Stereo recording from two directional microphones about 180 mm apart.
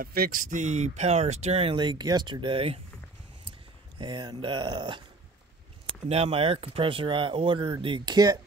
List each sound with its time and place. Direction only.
0.0 s speech: 55° right (ahead or behind); by 2.8 s 30° right (ahead or behind)
4.0 s speech: 25° right (ahead or behind)